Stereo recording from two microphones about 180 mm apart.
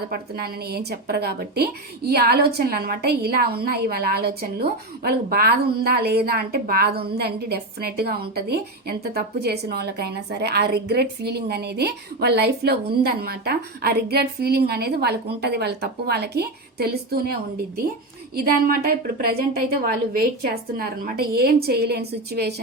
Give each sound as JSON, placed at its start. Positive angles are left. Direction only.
{"t": 0.1, "sound": "a woman's voice", "side_deg": -60}
{"t": 18.3, "sound": "a woman's voice", "side_deg": -55}